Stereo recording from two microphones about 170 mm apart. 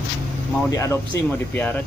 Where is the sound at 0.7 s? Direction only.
15° left (ahead or behind).